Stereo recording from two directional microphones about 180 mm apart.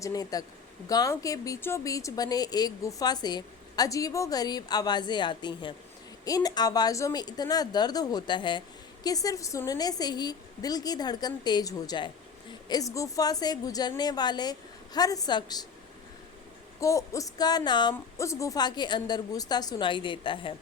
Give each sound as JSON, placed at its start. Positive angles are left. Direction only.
{"t": 0.0, "sound": "a woman's voice", "side_deg": 20}
{"t": 16.8, "sound": "a woman's voice", "side_deg": 15}